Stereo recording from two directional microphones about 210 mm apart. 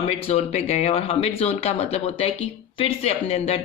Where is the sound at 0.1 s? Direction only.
30° left (ahead or behind).